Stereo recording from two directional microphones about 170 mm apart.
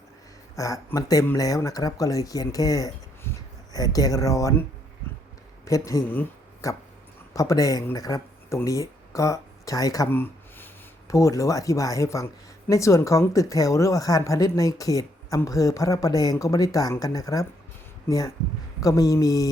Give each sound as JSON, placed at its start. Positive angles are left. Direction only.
{"t": 0.5, "sound": "speech", "side_deg": 20}
{"t": 5.6, "sound": "speech", "side_deg": 20}